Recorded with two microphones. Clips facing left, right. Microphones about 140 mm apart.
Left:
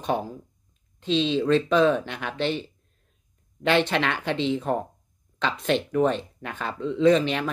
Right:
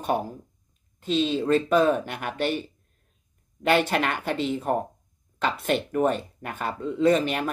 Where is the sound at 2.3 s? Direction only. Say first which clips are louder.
Even; 10° right (ahead or behind).